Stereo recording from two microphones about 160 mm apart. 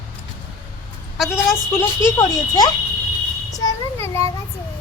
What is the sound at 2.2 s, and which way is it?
A child's voice, 25° left (ahead or behind).